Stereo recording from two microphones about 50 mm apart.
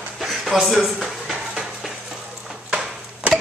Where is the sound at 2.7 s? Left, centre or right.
Right.